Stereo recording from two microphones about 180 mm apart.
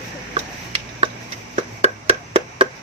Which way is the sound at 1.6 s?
35° right (ahead or behind).